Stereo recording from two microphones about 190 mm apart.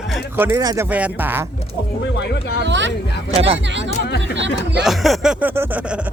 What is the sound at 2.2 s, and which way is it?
Speech, 60° left (ahead or behind).